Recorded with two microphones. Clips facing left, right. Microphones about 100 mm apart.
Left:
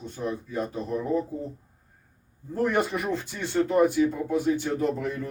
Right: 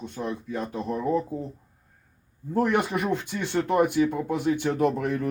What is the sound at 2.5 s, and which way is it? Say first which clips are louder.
Speech: right 2 dB; 65° right (ahead or behind).